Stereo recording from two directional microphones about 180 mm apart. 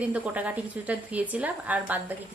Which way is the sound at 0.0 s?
5° right (ahead or behind).